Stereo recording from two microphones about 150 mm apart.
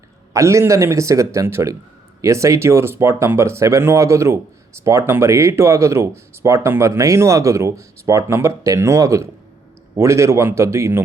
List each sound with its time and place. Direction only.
0.3 s speech: 20° right (ahead or behind)